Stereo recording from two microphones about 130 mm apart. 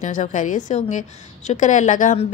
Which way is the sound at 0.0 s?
70° left (ahead or behind).